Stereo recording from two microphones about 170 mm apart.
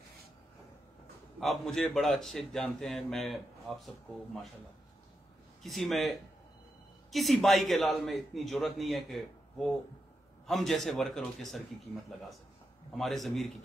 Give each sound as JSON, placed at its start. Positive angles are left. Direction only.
{"t": 1.4, "sound": "a man's voice", "side_deg": 0}
{"t": 5.6, "sound": "a man's voice", "side_deg": 0}
{"t": 12.9, "sound": "a man's voice", "side_deg": 0}